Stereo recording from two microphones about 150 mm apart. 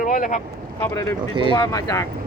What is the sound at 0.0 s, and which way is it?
Speech, 60° left (ahead or behind).